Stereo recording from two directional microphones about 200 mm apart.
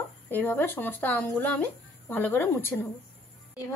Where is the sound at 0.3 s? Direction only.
10° left (ahead or behind).